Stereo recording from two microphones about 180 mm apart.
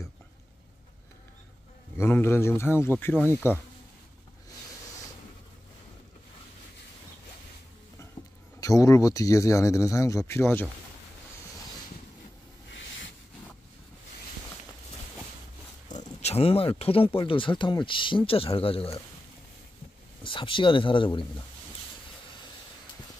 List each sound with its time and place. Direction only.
2.0 s speech: 15° left (ahead or behind)
8.5 s speech: 20° left (ahead or behind)
15.9 s speech: 40° left (ahead or behind)
20.2 s speech: 30° left (ahead or behind)